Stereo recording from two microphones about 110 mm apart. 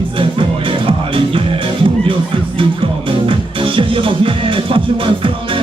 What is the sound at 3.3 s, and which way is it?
Music, 50° right (ahead or behind).